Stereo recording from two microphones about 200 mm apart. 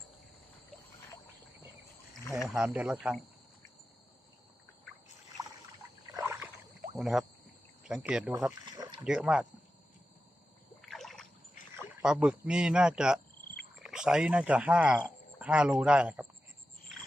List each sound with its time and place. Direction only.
2.5 s speech: 5° right (ahead or behind)
6.1 s a sound: 10° right (ahead or behind)
6.9 s speech: centre (ahead or behind)
8.4 s speech: 15° right (ahead or behind)
9.0 s speech: 5° right (ahead or behind)
10.8 s a sound: centre (ahead or behind)
12.0 s speech: 5° right (ahead or behind)